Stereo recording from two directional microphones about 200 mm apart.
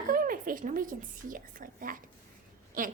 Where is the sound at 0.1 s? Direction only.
45° right (ahead or behind).